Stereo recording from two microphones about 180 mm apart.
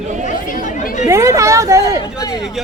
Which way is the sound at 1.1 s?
15° right (ahead or behind).